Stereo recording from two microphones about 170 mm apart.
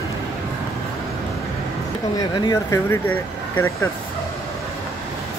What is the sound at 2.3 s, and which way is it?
Speech, 20° left (ahead or behind).